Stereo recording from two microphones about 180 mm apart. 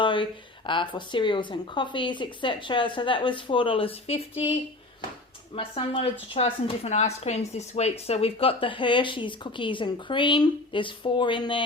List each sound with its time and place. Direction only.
0.0 s a sound: 25° left (ahead or behind)
0.7 s a woman's voice: 25° left (ahead or behind)
5.5 s a woman's voice: 30° left (ahead or behind)